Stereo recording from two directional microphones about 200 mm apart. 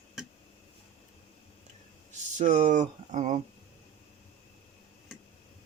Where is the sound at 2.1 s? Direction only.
35° right (ahead or behind).